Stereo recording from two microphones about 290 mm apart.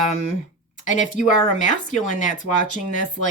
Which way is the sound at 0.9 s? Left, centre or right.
Left.